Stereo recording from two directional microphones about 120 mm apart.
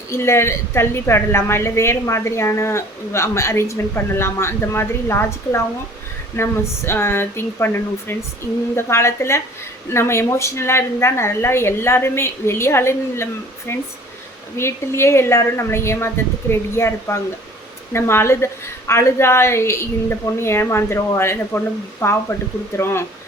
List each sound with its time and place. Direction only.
0.1 s a woman's voice: 20° left (ahead or behind)